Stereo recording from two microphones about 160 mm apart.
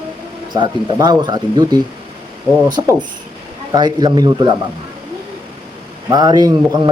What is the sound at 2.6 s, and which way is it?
A man's voice, 25° right (ahead or behind).